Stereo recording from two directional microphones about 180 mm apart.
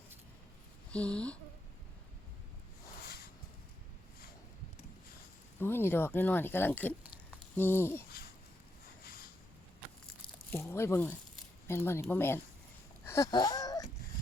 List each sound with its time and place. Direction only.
0.9 s speech: 5° left (ahead or behind)
5.5 s speech: 10° left (ahead or behind)
10.5 s speech: 15° left (ahead or behind)
13.1 s wheeze: 20° left (ahead or behind)